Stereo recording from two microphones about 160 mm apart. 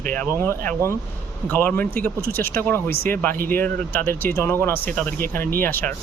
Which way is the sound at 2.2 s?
65° right (ahead or behind).